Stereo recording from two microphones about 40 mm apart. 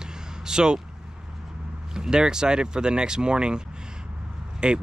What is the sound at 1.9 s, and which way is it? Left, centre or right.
Speech, centre.